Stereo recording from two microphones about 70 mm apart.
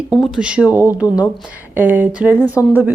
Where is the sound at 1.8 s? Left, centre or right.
Right.